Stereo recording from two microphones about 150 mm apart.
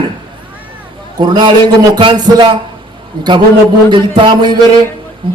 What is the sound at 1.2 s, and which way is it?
Speech, 30° right (ahead or behind).